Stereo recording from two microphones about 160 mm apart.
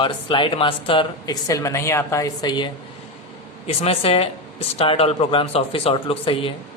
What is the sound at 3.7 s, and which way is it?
A man's voice, 40° left (ahead or behind).